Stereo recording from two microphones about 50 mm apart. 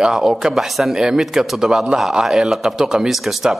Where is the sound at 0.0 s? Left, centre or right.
Centre.